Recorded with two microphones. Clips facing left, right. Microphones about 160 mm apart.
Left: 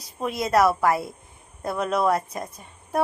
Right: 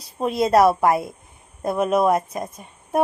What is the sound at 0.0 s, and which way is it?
A woman's voice, 25° right (ahead or behind).